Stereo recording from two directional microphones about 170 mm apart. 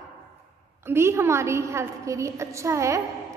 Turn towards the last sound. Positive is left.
turn(degrees=-15)  # may be behind; listen again after turning